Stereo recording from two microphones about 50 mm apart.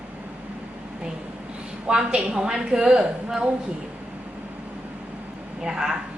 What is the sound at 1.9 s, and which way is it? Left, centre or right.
A woman's voice, centre.